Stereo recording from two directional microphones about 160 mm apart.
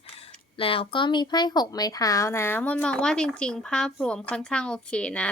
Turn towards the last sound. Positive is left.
turn(degrees=5)  # may be behind; listen again after turning